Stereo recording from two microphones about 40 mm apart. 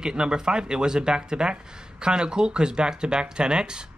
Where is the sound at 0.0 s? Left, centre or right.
Centre.